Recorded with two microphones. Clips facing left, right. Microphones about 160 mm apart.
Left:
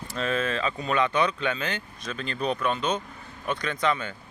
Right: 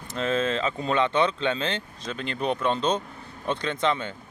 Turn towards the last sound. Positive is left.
turn(degrees=-25)  # may be behind; listen again after turning